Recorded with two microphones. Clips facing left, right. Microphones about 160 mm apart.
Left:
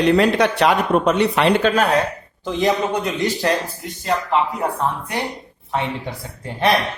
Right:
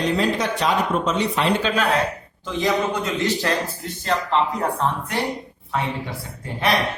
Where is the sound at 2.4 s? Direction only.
35° left (ahead or behind).